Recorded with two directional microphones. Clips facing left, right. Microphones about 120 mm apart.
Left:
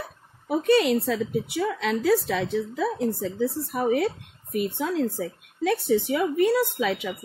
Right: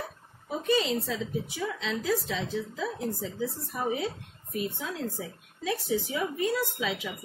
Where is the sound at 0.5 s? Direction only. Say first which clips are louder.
Left 7 dB; 70° left (ahead or behind).